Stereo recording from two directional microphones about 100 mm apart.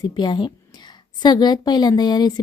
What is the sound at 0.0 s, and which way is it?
A woman's voice, 45° left (ahead or behind).